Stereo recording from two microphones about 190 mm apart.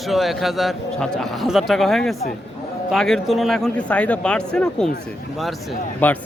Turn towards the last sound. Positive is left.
turn(degrees=10)  # may be behind; listen again after turning